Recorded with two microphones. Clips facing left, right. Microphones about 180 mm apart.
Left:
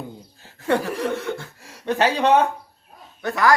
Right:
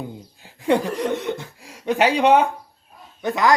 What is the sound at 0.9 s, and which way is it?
Speech, 20° right (ahead or behind).